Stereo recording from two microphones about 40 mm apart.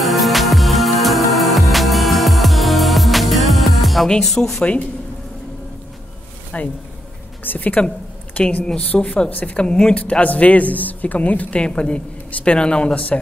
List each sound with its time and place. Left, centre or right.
0.0 s music: centre
4.3 s speech: centre
6.5 s a woman's voice: left
9.6 s speech: left
10.2 s a woman's voice: left
11.6 s speech: left